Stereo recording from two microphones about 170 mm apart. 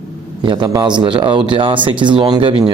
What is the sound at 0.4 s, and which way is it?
Speech, 25° right (ahead or behind).